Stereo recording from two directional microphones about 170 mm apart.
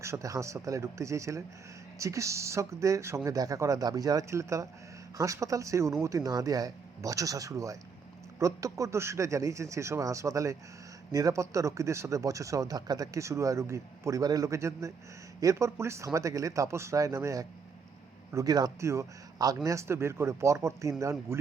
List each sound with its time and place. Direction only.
0.0 s a man's voice: 15° right (ahead or behind)